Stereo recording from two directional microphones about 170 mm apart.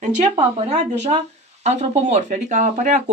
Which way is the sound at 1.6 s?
40° right (ahead or behind).